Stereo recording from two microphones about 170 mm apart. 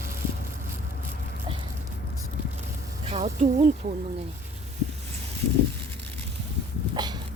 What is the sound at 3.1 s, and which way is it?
Speech, 45° right (ahead or behind).